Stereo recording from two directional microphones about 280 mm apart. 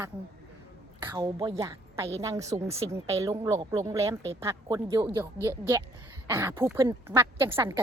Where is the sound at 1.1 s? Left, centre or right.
Centre.